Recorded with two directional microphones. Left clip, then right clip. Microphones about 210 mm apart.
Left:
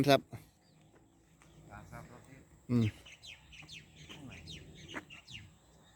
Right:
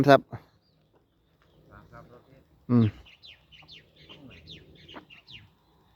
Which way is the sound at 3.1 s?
55° left (ahead or behind).